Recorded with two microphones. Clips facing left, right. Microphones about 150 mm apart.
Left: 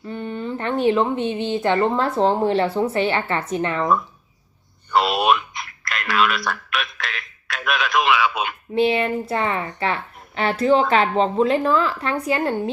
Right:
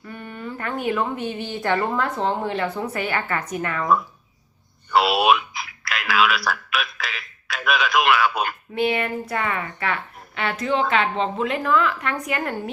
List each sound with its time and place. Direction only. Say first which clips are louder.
0.0 s speech: left 6 dB; 25° left (ahead or behind)
2.0 s speech: left 5 dB; 30° left (ahead or behind)
4.9 s a sound: even; centre (ahead or behind)
8.7 s a woman's voice: left 5 dB; 30° left (ahead or behind)